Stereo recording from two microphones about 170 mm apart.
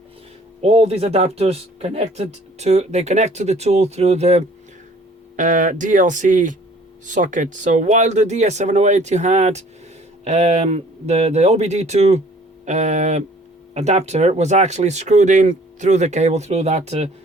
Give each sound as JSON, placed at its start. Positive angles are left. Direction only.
{"t": 0.6, "sound": "speech", "side_deg": -35}